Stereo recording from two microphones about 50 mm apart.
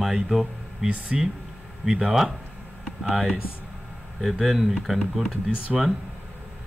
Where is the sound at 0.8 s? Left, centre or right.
Right.